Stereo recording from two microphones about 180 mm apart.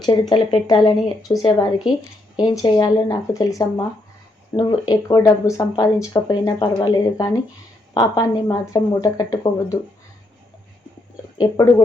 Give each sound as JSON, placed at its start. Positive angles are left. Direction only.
{"t": 0.0, "sound": "speech", "side_deg": 25}
{"t": 11.3, "sound": "speech", "side_deg": 20}